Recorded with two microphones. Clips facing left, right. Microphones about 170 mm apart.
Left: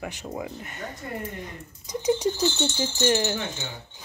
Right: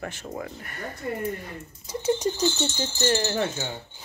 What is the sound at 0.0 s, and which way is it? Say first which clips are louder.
Speech: left 1 dB; 10° left (ahead or behind).